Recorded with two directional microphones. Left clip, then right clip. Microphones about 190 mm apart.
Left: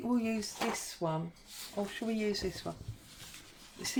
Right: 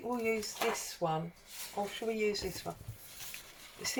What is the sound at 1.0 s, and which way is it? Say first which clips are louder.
Speech: right 2 dB; 50° left (ahead or behind).